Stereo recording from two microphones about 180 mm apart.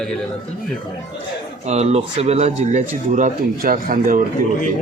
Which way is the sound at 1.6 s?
35° right (ahead or behind).